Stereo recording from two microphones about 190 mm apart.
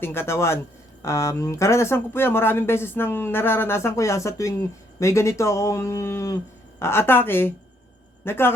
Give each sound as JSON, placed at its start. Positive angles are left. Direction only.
{"t": 0.0, "sound": "speech", "side_deg": 10}